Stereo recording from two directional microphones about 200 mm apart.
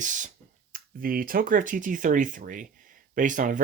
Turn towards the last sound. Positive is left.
turn(degrees=-40)  # may be behind; listen again after turning